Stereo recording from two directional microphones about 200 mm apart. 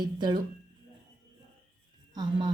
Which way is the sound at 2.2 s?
20° right (ahead or behind).